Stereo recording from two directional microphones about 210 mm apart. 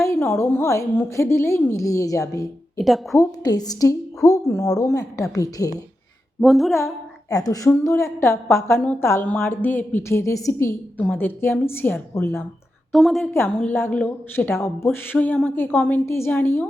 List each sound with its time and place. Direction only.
0.1 s a child's voice: 10° left (ahead or behind)
2.7 s a woman's voice: centre (ahead or behind)
3.2 s a child's voice: 20° left (ahead or behind)
6.4 s a woman's voice: centre (ahead or behind)
6.7 s a child's voice: 15° left (ahead or behind)
12.9 s a woman's voice: centre (ahead or behind)